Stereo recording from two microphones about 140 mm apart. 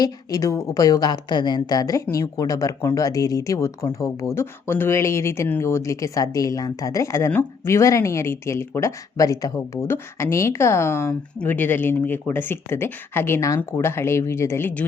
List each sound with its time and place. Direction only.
0.0 s a woman's voice: 25° left (ahead or behind)